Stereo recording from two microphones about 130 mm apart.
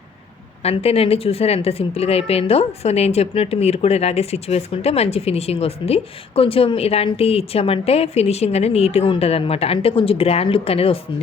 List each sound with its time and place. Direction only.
0.6 s a woman's voice: 50° left (ahead or behind)